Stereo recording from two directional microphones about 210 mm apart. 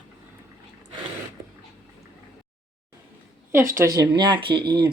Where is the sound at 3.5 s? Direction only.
15° right (ahead or behind).